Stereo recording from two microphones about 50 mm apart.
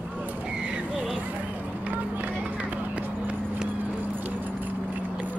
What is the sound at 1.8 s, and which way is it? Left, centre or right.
Run, right.